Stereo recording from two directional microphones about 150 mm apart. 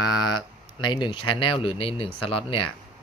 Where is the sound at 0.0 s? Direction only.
25° left (ahead or behind).